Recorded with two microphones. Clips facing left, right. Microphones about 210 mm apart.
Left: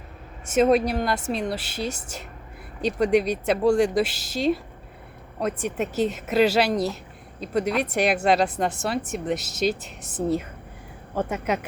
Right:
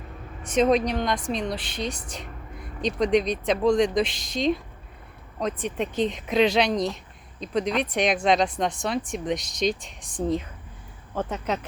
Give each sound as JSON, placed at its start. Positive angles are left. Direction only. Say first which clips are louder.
{"t": 0.4, "sound": "speech", "louder": "left 2 dB", "side_deg": 5}